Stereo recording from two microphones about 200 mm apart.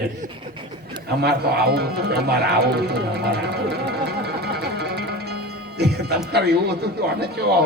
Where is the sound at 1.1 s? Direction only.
55° right (ahead or behind).